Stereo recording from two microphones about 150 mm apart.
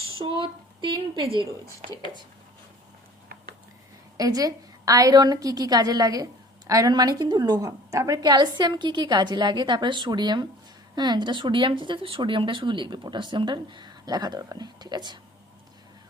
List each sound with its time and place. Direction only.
0.2 s speech: 35° right (ahead or behind)
4.2 s a woman's voice: 25° right (ahead or behind)